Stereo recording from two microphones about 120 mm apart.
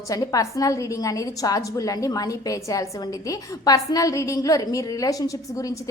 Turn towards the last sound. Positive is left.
turn(degrees=30)  # may be behind; listen again after turning